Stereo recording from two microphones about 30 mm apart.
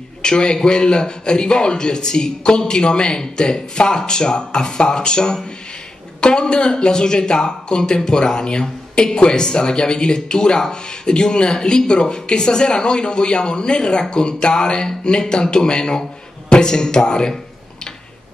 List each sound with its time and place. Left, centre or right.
0.2 s a man's voice: left